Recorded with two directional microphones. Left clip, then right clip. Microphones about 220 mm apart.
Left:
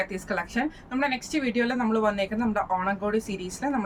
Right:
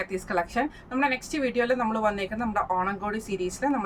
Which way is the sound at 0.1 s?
20° right (ahead or behind).